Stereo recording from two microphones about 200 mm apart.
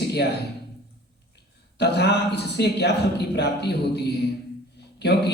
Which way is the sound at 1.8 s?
55° left (ahead or behind).